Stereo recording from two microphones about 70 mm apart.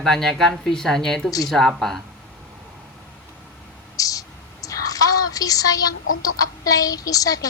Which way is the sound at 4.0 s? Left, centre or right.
Left.